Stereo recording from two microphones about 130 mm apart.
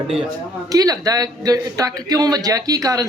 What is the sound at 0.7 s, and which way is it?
A man's voice, 30° right (ahead or behind).